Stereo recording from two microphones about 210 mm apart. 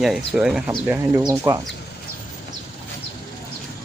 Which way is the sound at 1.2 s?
15° right (ahead or behind).